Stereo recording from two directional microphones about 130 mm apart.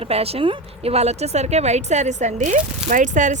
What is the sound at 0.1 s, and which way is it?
A woman's voice, 50° right (ahead or behind).